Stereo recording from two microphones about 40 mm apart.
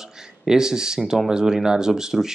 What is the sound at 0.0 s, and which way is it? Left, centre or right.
Speech, centre.